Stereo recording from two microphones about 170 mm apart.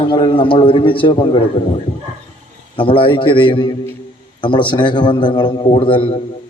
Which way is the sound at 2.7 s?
30° left (ahead or behind).